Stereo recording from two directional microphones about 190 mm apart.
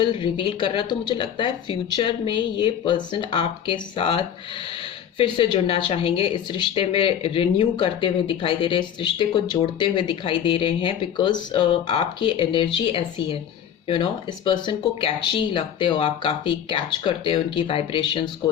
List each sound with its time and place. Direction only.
0.0 s speech: 25° left (ahead or behind)